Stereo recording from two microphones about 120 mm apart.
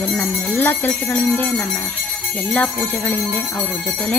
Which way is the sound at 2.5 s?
10° left (ahead or behind).